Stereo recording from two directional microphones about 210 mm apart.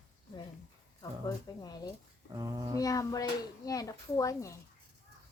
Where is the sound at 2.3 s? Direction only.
20° right (ahead or behind).